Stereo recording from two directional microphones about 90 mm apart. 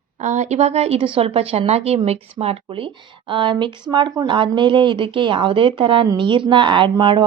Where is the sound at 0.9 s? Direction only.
90° right.